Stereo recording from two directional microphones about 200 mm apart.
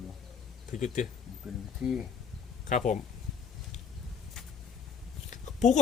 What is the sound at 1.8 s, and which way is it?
Speech, centre (ahead or behind).